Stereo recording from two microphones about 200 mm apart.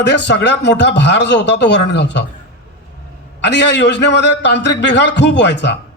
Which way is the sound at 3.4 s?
60° left (ahead or behind).